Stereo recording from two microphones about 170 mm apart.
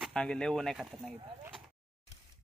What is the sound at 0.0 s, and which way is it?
Speech, 5° left (ahead or behind).